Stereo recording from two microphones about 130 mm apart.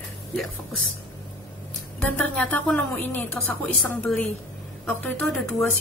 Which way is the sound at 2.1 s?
10° left (ahead or behind).